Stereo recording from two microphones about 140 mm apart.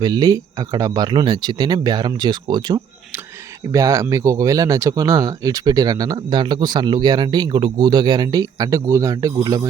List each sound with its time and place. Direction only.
0.0 s speech: 30° right (ahead or behind)